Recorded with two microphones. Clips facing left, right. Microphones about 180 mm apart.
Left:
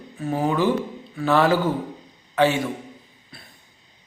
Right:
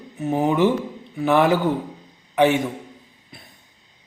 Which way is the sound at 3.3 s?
20° right (ahead or behind).